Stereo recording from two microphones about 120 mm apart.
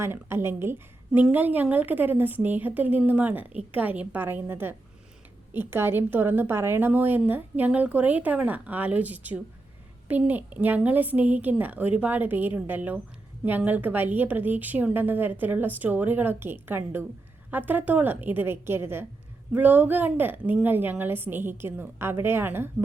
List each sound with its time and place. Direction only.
0.0 s a woman's voice: 20° right (ahead or behind)